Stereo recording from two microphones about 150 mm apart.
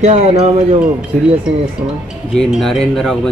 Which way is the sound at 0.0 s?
45° right (ahead or behind).